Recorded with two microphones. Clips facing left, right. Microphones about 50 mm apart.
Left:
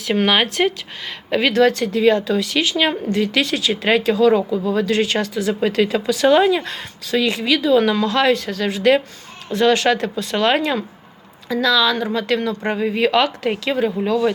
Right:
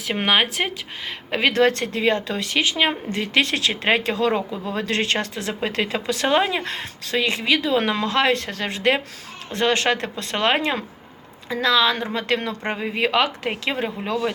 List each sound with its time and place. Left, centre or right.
0.3 s speech: centre
1.7 s speech: right
3.5 s speech: right
3.8 s a woman's voice: right
5.6 s a woman's voice: right
10.6 s a woman's voice: right
12.6 s speech: centre